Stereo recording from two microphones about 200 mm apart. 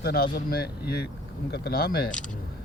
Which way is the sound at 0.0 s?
50° left (ahead or behind).